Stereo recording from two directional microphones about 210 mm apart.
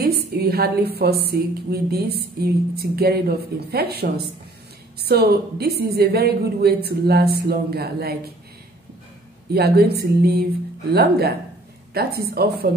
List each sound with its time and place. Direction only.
0.0 s a woman's voice: 50° right (ahead or behind)
9.5 s a woman's voice: 50° right (ahead or behind)